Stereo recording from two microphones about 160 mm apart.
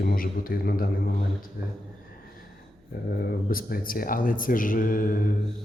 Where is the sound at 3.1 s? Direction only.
65° left (ahead or behind).